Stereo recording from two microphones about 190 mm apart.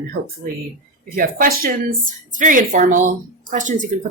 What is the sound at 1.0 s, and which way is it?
A woman's voice, 50° right (ahead or behind).